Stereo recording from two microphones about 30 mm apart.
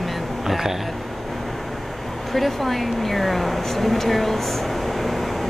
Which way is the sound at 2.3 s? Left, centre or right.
Centre.